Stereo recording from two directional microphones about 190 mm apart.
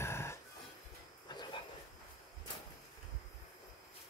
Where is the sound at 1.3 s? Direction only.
25° left (ahead or behind).